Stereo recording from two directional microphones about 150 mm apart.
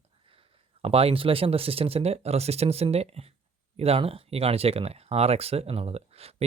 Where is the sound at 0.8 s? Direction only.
40° right (ahead or behind).